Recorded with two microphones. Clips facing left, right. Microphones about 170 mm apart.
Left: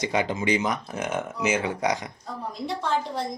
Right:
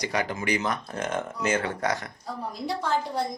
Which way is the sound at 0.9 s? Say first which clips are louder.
Left 1 dB; 10° left (ahead or behind).